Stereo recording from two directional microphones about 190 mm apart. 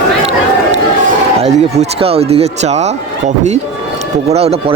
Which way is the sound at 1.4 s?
35° right (ahead or behind).